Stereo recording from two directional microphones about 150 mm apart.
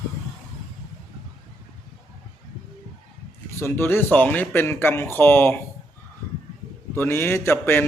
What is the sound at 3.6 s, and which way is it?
Speech, 15° left (ahead or behind).